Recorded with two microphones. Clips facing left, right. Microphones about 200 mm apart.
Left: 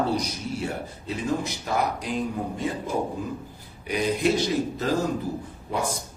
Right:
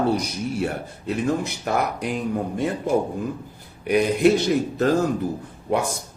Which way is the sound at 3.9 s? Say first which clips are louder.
Right 6 dB; 60° right (ahead or behind).